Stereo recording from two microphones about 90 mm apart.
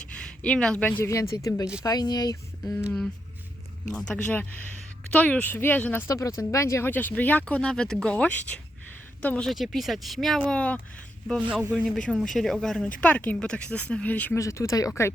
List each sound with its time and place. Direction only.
0.2 s speech: 10° left (ahead or behind)
1.0 s speech: 30° left (ahead or behind)
3.9 s a woman's voice: 10° left (ahead or behind)
6.1 s speech: 35° left (ahead or behind)
6.9 s speech: 20° left (ahead or behind)
9.5 s speech: centre (ahead or behind)
10.4 s speech: 15° left (ahead or behind)
11.9 s speech: 5° left (ahead or behind)
14.3 s speech: 35° left (ahead or behind)